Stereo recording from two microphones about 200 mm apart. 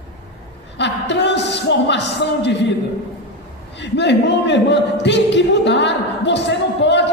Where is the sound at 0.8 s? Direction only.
60° left (ahead or behind).